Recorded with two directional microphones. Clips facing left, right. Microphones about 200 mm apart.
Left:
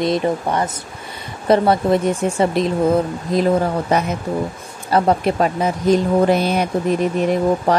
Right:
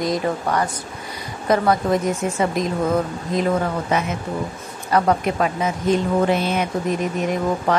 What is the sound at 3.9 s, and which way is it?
Speech, 35° left (ahead or behind).